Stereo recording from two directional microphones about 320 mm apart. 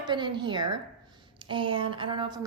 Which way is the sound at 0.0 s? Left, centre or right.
Centre.